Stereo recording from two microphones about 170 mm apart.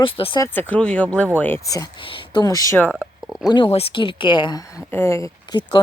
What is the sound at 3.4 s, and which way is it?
Speech, 30° left (ahead or behind).